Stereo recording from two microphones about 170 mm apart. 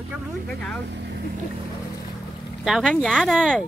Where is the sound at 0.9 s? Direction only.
90° right.